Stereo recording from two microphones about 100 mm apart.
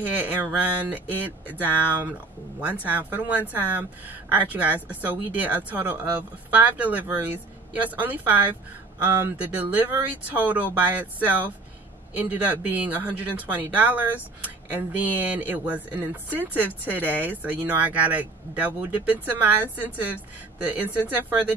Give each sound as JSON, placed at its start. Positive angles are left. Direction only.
{"t": 0.0, "sound": "speech", "side_deg": -15}